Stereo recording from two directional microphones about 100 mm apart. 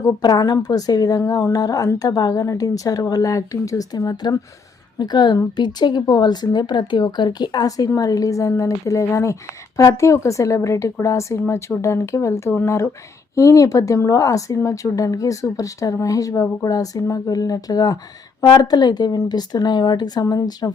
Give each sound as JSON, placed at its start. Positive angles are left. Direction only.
{"t": 0.2, "sound": "speech", "side_deg": 45}
{"t": 1.2, "sound": "speech", "side_deg": 25}